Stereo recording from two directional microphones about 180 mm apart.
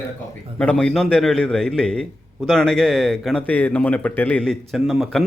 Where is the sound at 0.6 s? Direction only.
5° left (ahead or behind).